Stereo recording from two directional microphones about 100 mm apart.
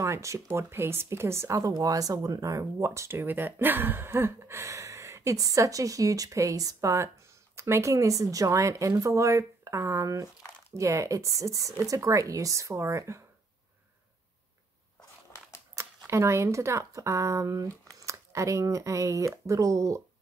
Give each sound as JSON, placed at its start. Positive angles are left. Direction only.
{"t": 0.0, "sound": "speech", "side_deg": -30}
{"t": 15.8, "sound": "a sound", "side_deg": -30}
{"t": 16.1, "sound": "speech", "side_deg": -30}